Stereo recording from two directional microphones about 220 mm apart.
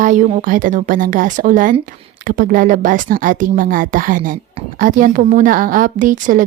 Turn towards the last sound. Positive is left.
turn(degrees=-35)  # may be behind; listen again after turning